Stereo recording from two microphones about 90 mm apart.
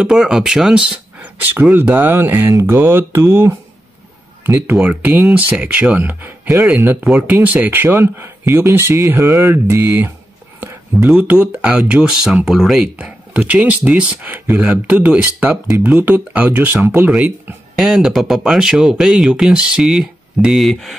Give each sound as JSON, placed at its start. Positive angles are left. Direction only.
{"t": 0.0, "sound": "speech", "side_deg": -5}
{"t": 1.5, "sound": "speech", "side_deg": -20}
{"t": 4.8, "sound": "speech", "side_deg": -15}
{"t": 9.5, "sound": "a sound", "side_deg": -30}
{"t": 11.1, "sound": "speech", "side_deg": -15}
{"t": 12.9, "sound": "speech", "side_deg": -15}
{"t": 17.7, "sound": "speech", "side_deg": -5}